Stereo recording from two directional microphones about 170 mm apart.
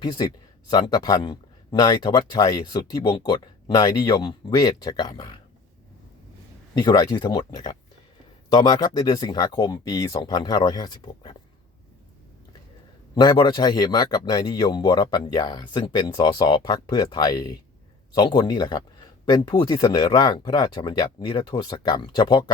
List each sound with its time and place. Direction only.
0.0 s speech: 25° left (ahead or behind)
6.8 s speech: 25° left (ahead or behind)
13.1 s speech: 25° left (ahead or behind)